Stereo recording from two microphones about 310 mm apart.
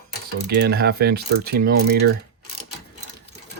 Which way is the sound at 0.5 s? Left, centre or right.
Right.